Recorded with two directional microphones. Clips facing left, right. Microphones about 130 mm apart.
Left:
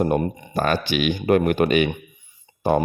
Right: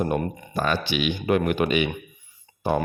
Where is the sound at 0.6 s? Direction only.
50° left (ahead or behind).